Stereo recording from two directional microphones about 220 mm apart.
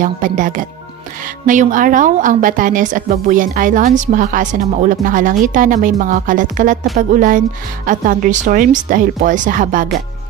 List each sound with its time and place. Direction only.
0.0 s a woman's voice: 35° right (ahead or behind)